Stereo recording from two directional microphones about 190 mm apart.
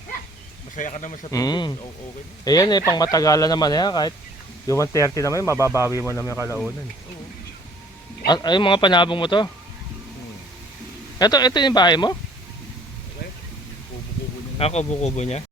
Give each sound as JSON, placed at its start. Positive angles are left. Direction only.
{"t": 0.8, "sound": "speech", "side_deg": 40}
{"t": 1.3, "sound": "speech", "side_deg": 20}
{"t": 5.7, "sound": "a man's voice", "side_deg": -15}
{"t": 8.3, "sound": "speech", "side_deg": 20}
{"t": 11.2, "sound": "speech", "side_deg": 20}
{"t": 14.6, "sound": "speech", "side_deg": 35}